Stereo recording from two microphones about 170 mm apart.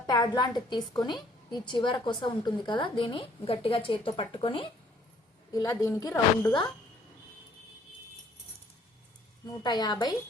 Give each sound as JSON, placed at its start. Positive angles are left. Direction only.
{"t": 0.1, "sound": "a woman's voice", "side_deg": 25}
{"t": 5.5, "sound": "a woman's voice", "side_deg": 20}
{"t": 9.6, "sound": "a woman's voice", "side_deg": 25}